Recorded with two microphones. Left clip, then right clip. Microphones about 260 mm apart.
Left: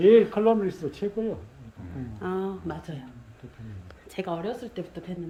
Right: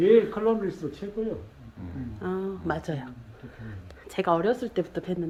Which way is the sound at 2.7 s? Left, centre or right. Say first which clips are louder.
Right 7 dB; centre.